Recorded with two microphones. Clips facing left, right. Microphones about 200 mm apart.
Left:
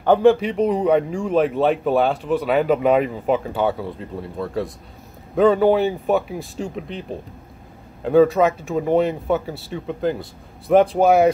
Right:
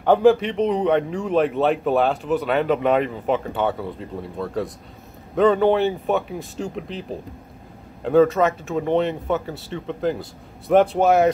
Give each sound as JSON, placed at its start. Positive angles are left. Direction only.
{"t": 0.0, "sound": "a man's voice", "side_deg": 0}